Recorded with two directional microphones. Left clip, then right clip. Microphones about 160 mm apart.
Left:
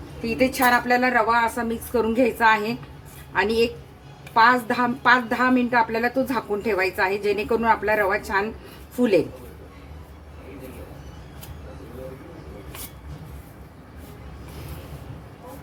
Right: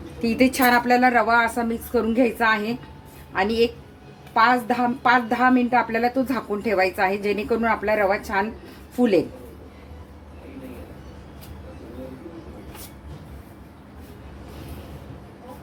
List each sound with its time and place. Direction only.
0.2 s a woman's voice: 50° right (ahead or behind); by 9.2 s 15° right (ahead or behind)